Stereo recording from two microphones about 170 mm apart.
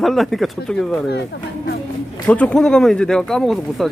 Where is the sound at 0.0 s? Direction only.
Centre (ahead or behind).